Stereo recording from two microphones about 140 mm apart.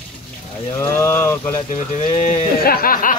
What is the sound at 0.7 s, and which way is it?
Speech, 15° left (ahead or behind).